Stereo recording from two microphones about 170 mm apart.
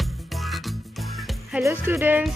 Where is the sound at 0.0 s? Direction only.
Centre (ahead or behind).